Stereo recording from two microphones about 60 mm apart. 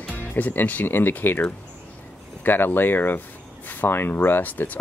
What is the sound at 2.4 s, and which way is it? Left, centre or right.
Speech, left.